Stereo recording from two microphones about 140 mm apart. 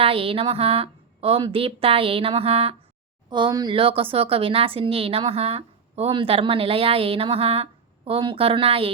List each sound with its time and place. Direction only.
0.0 s speech: 40° right (ahead or behind)
3.2 s speech: 35° right (ahead or behind)